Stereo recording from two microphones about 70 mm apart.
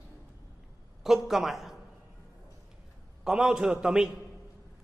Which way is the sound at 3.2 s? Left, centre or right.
Centre.